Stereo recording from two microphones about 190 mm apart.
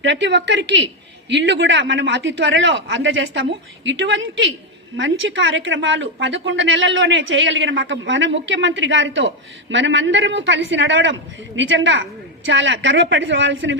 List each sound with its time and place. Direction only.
0.0 s speech: 65° right (ahead or behind)